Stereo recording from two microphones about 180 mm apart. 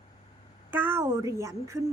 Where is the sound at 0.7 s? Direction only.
10° right (ahead or behind).